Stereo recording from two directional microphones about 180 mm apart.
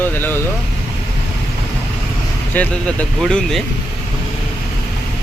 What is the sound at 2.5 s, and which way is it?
Speech, 5° left (ahead or behind).